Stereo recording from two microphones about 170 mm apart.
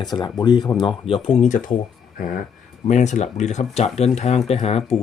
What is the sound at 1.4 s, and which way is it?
Speech, 50° left (ahead or behind).